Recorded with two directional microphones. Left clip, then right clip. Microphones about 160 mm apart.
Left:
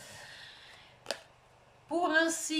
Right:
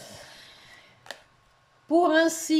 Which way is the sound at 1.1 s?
5° left (ahead or behind).